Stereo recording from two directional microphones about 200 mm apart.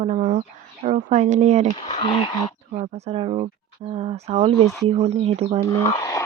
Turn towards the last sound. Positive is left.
turn(degrees=15)  # may be behind; listen again after turning